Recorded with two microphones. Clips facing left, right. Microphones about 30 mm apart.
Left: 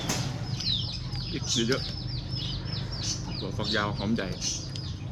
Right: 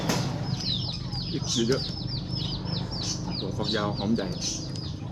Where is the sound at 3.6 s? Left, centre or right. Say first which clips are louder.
Even; left.